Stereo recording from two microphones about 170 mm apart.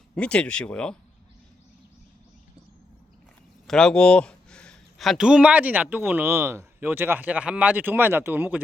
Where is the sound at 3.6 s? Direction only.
5° left (ahead or behind).